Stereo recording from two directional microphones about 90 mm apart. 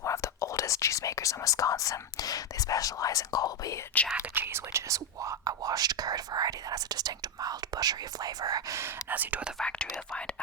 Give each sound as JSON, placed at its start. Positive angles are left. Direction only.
{"t": 0.0, "sound": "speech", "side_deg": 35}
{"t": 4.4, "sound": "speech", "side_deg": -30}
{"t": 8.8, "sound": "speech", "side_deg": -20}
{"t": 9.6, "sound": "speech", "side_deg": 10}